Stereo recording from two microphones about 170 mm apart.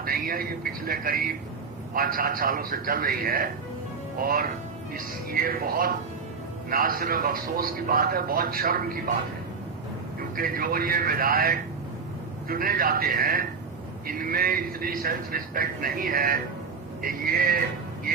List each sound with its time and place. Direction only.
0.0 s speech: 60° right (ahead or behind)
10.3 s speech: 55° right (ahead or behind)